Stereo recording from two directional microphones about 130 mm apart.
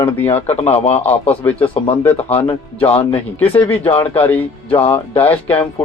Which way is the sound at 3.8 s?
50° left (ahead or behind).